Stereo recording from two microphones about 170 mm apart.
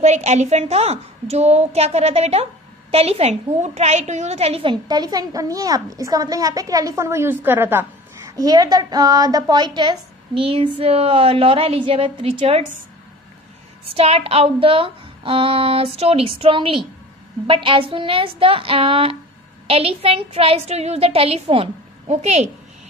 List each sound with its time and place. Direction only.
0.0 s a woman's voice: 40° right (ahead or behind)
13.9 s a woman's voice: 35° right (ahead or behind)